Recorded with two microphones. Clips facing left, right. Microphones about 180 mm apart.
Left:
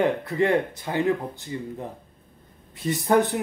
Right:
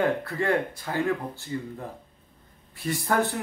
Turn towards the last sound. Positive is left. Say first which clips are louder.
# left 5 dB
turn(degrees=20)  # may be behind; listen again after turning